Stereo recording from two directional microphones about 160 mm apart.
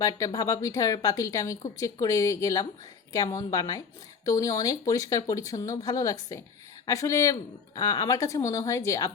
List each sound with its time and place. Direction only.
0.0 s speech: 20° left (ahead or behind)